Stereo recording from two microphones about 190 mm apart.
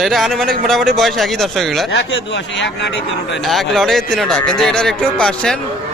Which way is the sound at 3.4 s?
Centre (ahead or behind).